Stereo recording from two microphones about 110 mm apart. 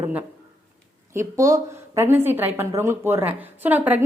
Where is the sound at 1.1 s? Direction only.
25° right (ahead or behind).